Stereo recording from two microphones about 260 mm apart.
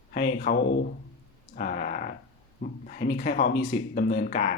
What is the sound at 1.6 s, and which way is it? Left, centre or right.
Speech, left.